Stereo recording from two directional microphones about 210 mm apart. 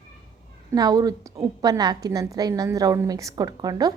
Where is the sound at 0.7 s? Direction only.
20° right (ahead or behind).